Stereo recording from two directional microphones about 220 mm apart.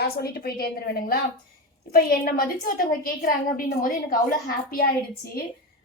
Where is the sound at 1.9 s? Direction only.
40° left (ahead or behind).